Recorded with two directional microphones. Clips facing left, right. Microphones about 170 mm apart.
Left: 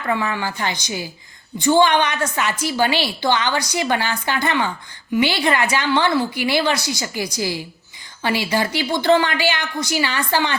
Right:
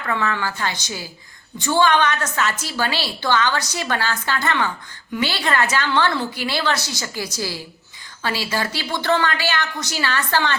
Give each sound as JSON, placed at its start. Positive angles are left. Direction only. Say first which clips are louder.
{"t": 0.1, "sound": "a woman's voice", "louder": "left 1 dB", "side_deg": 15}